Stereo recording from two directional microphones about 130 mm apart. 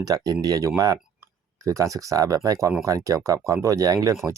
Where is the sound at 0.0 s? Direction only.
30° right (ahead or behind).